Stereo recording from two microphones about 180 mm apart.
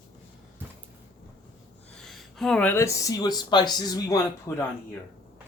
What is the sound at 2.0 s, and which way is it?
Speech, centre (ahead or behind).